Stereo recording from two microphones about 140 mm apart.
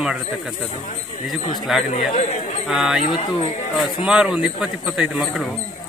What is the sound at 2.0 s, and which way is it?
Speech, 60° left (ahead or behind).